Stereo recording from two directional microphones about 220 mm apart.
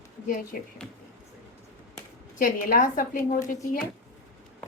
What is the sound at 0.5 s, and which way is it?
Speech, 40° left (ahead or behind).